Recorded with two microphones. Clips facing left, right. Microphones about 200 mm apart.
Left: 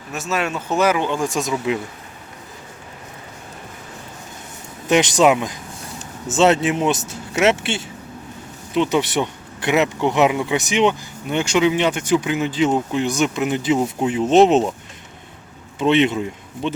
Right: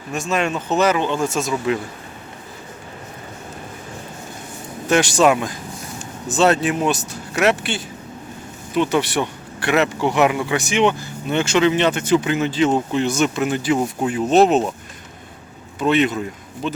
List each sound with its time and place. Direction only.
0.1 s speech: 5° left (ahead or behind)
4.9 s speech: 20° left (ahead or behind)
8.9 s speech: 20° left (ahead or behind)
15.8 s speech: 25° left (ahead or behind)